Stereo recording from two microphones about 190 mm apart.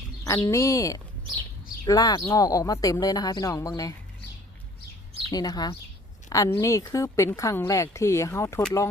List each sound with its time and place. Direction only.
0.3 s speech: 15° left (ahead or behind)
5.3 s speech: 20° left (ahead or behind)